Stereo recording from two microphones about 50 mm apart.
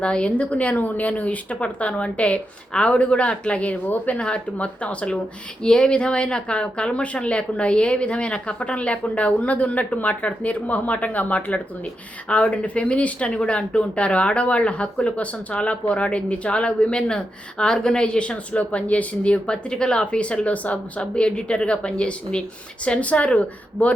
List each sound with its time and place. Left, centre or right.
0.0 s a woman's voice: left